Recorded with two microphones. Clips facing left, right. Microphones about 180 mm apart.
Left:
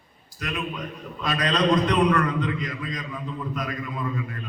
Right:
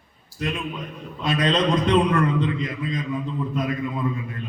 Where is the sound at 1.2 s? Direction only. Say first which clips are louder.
Right 2 dB; 25° right (ahead or behind).